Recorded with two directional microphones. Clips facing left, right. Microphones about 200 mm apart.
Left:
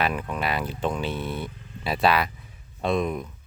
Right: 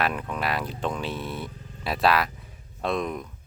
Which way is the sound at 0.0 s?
Centre (ahead or behind).